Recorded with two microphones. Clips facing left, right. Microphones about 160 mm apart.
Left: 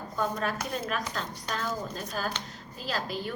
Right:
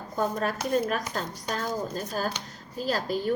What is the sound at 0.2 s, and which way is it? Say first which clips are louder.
A child's voice: right 3 dB; 40° right (ahead or behind).